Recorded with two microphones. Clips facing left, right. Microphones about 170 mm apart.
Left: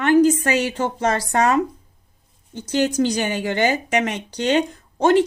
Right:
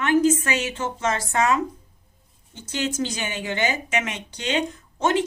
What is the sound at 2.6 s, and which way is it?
Speech, 35° left (ahead or behind).